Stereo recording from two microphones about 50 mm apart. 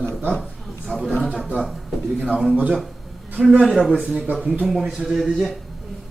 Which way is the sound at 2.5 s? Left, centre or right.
Right.